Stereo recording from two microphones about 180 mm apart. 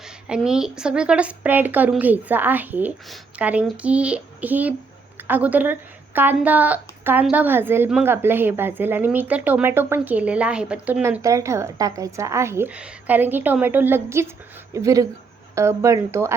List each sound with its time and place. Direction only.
0.3 s a woman's voice: 5° right (ahead or behind)